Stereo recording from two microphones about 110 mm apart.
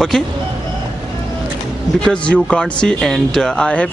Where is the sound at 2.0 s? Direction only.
10° left (ahead or behind).